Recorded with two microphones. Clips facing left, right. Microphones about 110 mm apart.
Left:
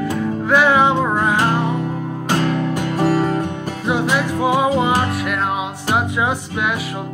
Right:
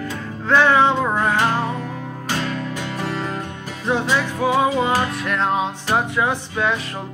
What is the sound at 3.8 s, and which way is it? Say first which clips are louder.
Music: left 1 dB; 15° left (ahead or behind).